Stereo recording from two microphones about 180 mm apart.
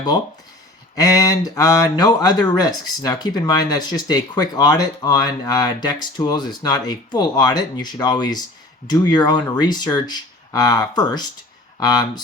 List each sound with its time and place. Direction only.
0.9 s speech: 20° left (ahead or behind)